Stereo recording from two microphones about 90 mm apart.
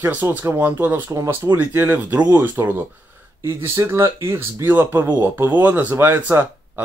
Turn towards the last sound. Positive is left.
turn(degrees=-25)  # may be behind; listen again after turning